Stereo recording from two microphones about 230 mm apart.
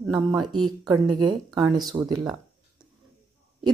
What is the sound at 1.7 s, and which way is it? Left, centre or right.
Speech, centre.